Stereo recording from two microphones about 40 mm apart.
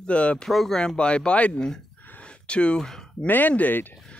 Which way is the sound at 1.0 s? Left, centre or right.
Left.